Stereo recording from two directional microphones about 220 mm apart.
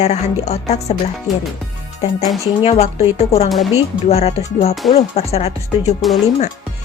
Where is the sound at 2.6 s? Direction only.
30° left (ahead or behind).